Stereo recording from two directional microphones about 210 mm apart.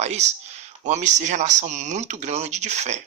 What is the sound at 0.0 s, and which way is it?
Speech, 30° right (ahead or behind).